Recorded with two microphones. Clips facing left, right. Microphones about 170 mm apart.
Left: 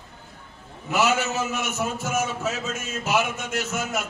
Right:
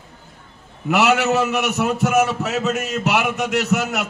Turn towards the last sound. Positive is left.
turn(degrees=-70)  # may be behind; listen again after turning